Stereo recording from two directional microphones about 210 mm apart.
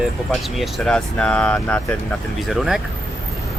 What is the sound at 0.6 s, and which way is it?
Speech, 5° left (ahead or behind).